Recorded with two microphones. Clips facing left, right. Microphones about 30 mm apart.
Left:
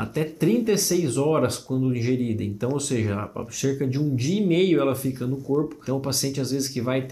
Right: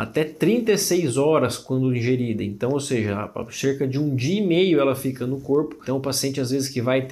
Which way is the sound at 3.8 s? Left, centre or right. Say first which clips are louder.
Right 2 dB; right.